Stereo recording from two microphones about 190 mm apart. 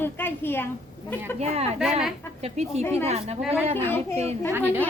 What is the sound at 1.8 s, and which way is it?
Speech, centre (ahead or behind).